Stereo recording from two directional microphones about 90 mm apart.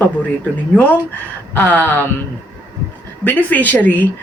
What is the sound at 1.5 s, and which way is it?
Speech, 20° left (ahead or behind).